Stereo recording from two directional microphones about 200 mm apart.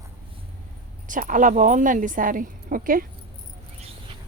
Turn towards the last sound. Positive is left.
turn(degrees=-45)  # may be behind; listen again after turning